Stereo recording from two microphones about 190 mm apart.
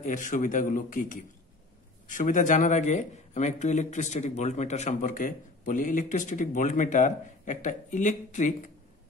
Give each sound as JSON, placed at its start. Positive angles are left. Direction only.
{"t": 0.0, "sound": "a man's voice", "side_deg": 40}